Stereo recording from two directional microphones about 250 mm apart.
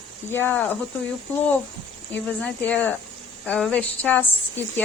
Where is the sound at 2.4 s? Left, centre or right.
Centre.